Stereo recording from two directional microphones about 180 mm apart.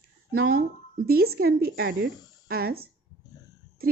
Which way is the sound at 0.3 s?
55° right (ahead or behind).